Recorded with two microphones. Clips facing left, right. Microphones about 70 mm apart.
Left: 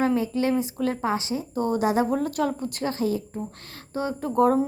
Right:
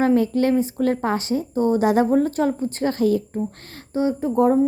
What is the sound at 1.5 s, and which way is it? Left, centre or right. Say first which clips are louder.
Speech: right 5 dB; right.